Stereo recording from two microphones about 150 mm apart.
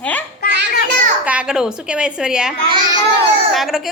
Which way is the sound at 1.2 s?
10° right (ahead or behind).